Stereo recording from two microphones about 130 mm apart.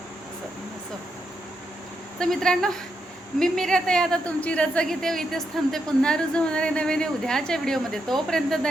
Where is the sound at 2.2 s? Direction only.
5° left (ahead or behind).